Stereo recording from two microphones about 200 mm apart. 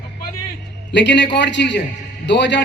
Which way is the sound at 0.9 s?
60° left (ahead or behind).